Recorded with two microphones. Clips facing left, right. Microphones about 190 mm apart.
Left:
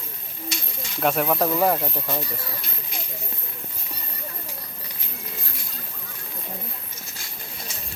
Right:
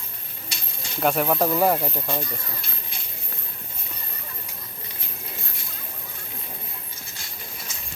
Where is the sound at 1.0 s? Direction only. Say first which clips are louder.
Even; centre (ahead or behind).